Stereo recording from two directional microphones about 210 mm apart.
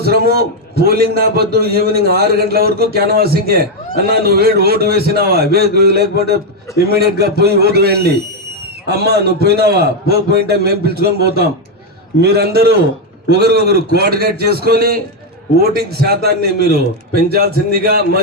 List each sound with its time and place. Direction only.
0.3 s a man's voice: 45° right (ahead or behind)